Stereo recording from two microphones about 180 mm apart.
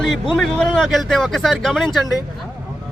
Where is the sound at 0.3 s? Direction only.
Centre (ahead or behind).